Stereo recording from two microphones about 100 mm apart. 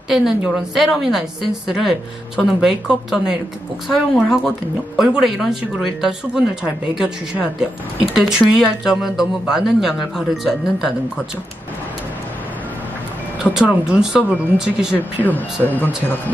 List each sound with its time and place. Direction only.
0.1 s speech: 5° right (ahead or behind)
13.4 s speech: 5° right (ahead or behind)
15.6 s speech: 20° left (ahead or behind)